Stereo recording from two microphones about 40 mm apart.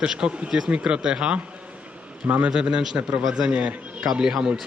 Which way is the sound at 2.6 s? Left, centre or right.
Right.